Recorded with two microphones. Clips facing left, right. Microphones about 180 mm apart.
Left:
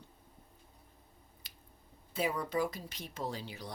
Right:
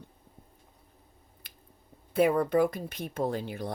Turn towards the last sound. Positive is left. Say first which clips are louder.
# right 9 dB
turn(degrees=-55)  # may be behind; listen again after turning